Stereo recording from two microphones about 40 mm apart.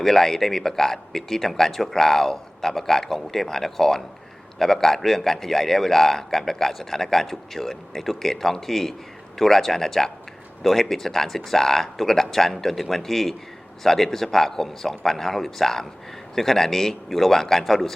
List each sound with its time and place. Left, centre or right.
0.0 s a man's voice: centre